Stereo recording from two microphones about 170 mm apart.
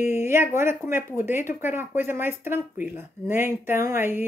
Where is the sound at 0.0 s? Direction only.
15° right (ahead or behind).